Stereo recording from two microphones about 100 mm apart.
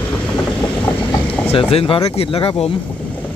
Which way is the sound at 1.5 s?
70° left (ahead or behind).